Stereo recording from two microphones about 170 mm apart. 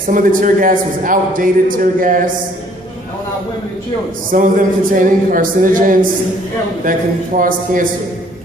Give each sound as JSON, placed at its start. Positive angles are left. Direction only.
{"t": 0.1, "sound": "a man's voice", "side_deg": -50}
{"t": 4.3, "sound": "a man's voice", "side_deg": -50}
{"t": 7.3, "sound": "a man's voice", "side_deg": -55}